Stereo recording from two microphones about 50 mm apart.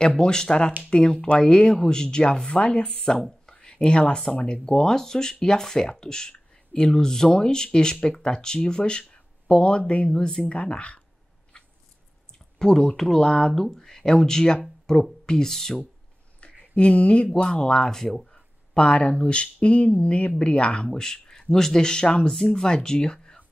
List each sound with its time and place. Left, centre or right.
0.0 s speech: centre
3.0 s speech: centre; by 11.0 s left
11.5 s cat: left
12.5 s speech: centre
16.3 s a sound: left
17.3 s speech: centre
18.8 s speech: left